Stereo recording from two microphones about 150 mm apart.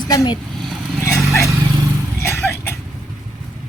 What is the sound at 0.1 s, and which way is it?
Speech, 25° left (ahead or behind).